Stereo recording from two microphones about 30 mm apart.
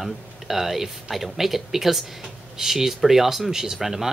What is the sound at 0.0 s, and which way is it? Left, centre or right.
Speech, centre.